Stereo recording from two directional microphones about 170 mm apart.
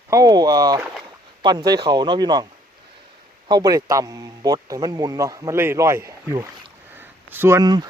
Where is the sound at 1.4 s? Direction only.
25° right (ahead or behind).